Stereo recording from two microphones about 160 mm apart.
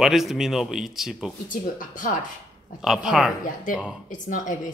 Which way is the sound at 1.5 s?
55° left (ahead or behind).